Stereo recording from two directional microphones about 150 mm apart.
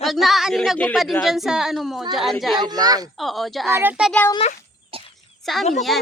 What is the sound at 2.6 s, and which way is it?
Speech, 25° right (ahead or behind).